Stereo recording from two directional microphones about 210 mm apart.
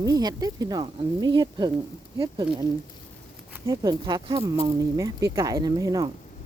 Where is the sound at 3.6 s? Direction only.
15° right (ahead or behind).